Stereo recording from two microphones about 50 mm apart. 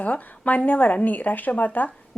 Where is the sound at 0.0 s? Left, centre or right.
Left.